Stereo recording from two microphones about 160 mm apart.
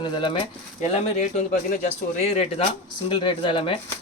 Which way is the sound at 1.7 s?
50° left (ahead or behind).